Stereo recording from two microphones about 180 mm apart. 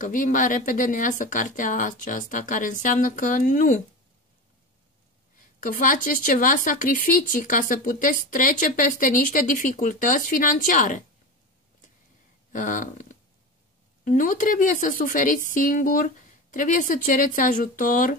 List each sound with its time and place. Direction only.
0.0 s speech: 45° left (ahead or behind)
5.6 s speech: 50° left (ahead or behind)
12.5 s speech: 45° left (ahead or behind)